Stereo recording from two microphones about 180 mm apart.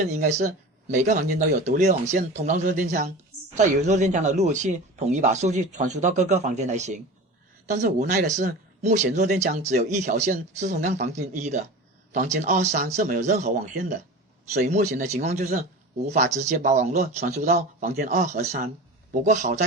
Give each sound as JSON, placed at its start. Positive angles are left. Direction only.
{"t": 0.1, "sound": "speech", "side_deg": -40}
{"t": 14.6, "sound": "speech", "side_deg": -40}